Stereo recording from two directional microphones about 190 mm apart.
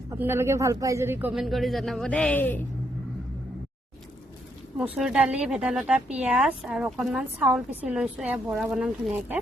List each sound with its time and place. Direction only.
0.2 s speech: 15° right (ahead or behind)
1.3 s a woman's voice: centre (ahead or behind)
4.8 s a woman's voice: 5° right (ahead or behind)